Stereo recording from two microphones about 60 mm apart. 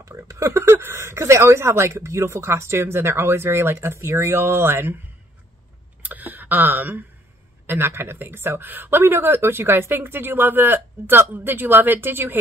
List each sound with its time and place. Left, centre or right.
0.0 s speech: right
6.0 s a woman's voice: right